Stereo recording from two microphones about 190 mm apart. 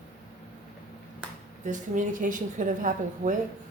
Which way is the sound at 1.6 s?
40° right (ahead or behind).